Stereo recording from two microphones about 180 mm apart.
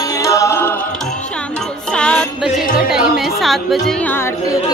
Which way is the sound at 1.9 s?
5° left (ahead or behind).